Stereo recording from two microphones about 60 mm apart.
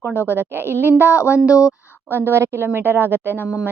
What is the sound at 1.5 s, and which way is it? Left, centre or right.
Speech, left.